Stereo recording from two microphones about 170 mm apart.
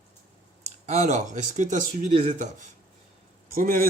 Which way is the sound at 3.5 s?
55° right (ahead or behind).